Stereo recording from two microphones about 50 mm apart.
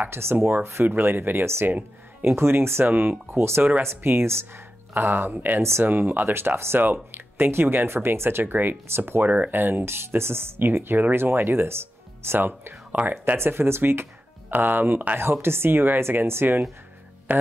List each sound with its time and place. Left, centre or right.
0.1 s speech: right
2.8 s speech: right
5.6 s speech: right
5.9 s speech: right
9.2 s speech: right
9.6 s speech: right
17.3 s speech: right